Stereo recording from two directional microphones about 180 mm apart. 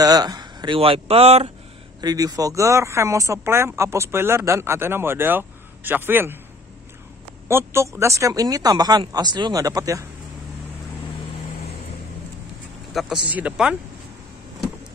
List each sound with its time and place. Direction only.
0.0 s speech: 20° right (ahead or behind)
2.0 s speech: 20° right (ahead or behind)
7.4 s speech: 15° right (ahead or behind)
12.9 s speech: 5° right (ahead or behind)